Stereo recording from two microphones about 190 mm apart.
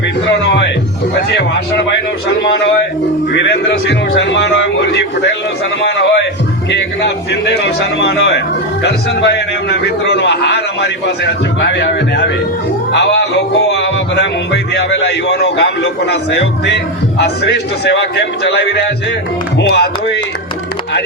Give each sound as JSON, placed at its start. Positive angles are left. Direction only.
{"t": 0.3, "sound": "music", "side_deg": 75}
{"t": 3.3, "sound": "music", "side_deg": 65}
{"t": 8.8, "sound": "a man's voice", "side_deg": 65}
{"t": 12.9, "sound": "music", "side_deg": 70}
{"t": 19.5, "sound": "a man's voice", "side_deg": 60}